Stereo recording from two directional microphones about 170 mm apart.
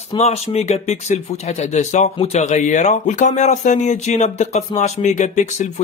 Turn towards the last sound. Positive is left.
turn(degrees=45)  # may be behind; listen again after turning